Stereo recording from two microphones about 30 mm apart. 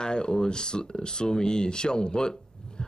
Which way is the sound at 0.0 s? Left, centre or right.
Left.